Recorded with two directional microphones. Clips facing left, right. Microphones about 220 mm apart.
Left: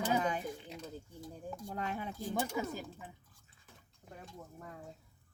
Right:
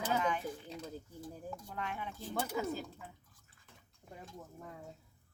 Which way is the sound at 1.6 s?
40° left (ahead or behind).